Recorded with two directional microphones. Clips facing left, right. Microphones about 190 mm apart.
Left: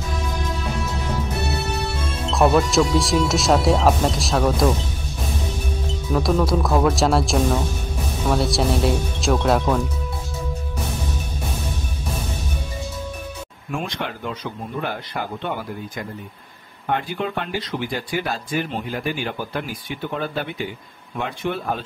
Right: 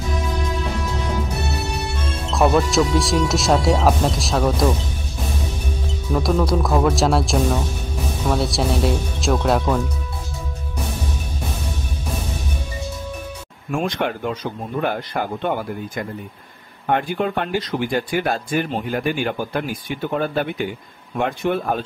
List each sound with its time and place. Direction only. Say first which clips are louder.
2.3 s speech: even; centre (ahead or behind)
6.1 s speech: even; centre (ahead or behind)
13.7 s speech: right 6 dB; 45° right (ahead or behind)
16.9 s speech: right 4 dB; 50° right (ahead or behind)